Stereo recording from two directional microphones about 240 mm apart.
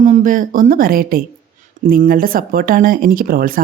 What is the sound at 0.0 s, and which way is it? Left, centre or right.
Speech, right.